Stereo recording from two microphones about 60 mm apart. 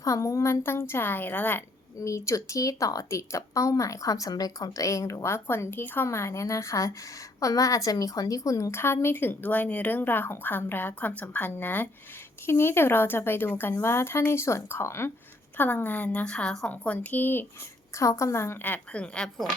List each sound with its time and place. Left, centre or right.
0.0 s speech: left
2.0 s a woman's voice: left
6.1 s a woman's voice: left
7.9 s speech: left
8.7 s speech: left
12.5 s a woman's voice: left
15.5 s a woman's voice: left
17.9 s a woman's voice: left
18.6 s speech: left
19.0 s speech: centre